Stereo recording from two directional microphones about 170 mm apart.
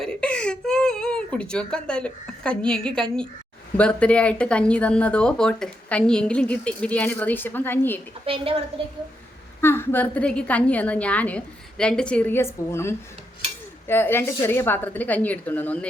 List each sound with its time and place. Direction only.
0.0 s whimper: 5° left (ahead or behind)
3.8 s speech: 5° left (ahead or behind)
8.3 s a woman's voice: 35° right (ahead or behind)
9.6 s speech: 15° left (ahead or behind)